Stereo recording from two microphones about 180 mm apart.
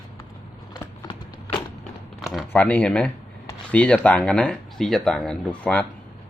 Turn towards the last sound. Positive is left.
turn(degrees=5)  # may be behind; listen again after turning